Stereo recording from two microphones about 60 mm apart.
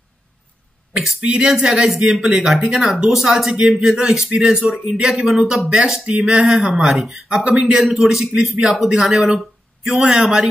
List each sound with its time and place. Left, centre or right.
1.2 s a man's voice: centre